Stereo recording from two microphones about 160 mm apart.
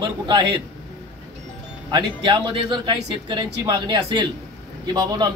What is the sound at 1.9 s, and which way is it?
A man's voice, 30° right (ahead or behind).